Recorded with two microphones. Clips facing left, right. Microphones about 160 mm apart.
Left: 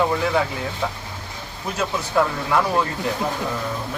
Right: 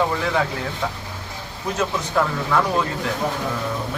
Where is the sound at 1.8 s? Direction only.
10° left (ahead or behind).